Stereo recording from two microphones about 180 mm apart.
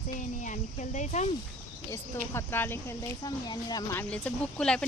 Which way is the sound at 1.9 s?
15° left (ahead or behind).